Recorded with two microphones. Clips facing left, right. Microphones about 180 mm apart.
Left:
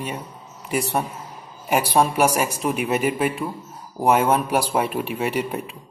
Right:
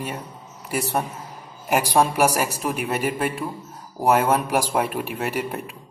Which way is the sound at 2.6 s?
Centre (ahead or behind).